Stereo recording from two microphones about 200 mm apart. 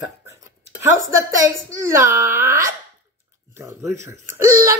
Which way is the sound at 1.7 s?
15° right (ahead or behind).